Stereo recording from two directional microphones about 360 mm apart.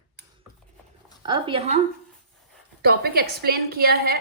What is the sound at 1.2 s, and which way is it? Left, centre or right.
Speech, centre.